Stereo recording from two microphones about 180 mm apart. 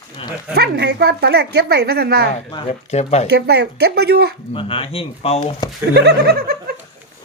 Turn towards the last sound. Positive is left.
turn(degrees=-65)  # may be behind; listen again after turning